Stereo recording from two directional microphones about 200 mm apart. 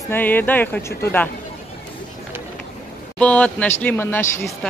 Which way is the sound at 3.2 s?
5° left (ahead or behind).